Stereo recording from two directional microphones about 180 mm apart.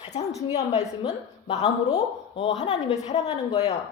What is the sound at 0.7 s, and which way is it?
A woman's voice, 35° left (ahead or behind).